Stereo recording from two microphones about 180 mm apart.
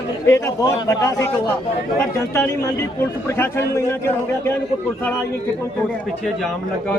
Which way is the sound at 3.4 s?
15° left (ahead or behind).